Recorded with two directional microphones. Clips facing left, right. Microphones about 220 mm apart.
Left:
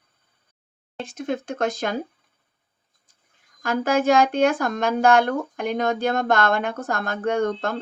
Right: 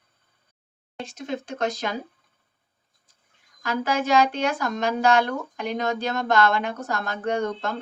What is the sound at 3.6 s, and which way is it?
Speech, 50° left (ahead or behind).